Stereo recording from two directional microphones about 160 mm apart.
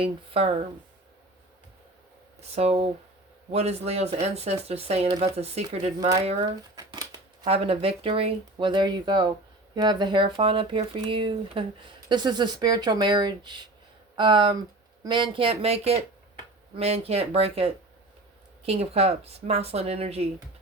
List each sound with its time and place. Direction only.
0.0 s speech: 35° right (ahead or behind)
2.4 s speech: 40° right (ahead or behind)
6.0 s speech: 20° right (ahead or behind)
6.7 s shuffling cards: 25° right (ahead or behind)
7.4 s speech: 35° right (ahead or behind)